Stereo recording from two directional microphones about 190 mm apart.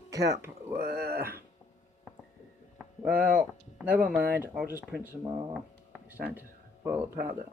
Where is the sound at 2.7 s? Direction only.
5° right (ahead or behind).